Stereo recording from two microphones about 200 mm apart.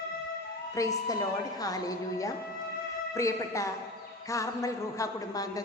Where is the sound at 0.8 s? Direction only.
15° left (ahead or behind).